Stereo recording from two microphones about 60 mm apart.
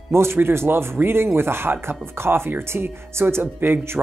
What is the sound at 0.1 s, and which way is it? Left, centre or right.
Speech, right.